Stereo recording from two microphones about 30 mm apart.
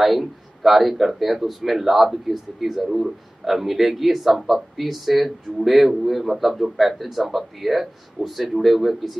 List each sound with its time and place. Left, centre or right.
0.0 s speech: centre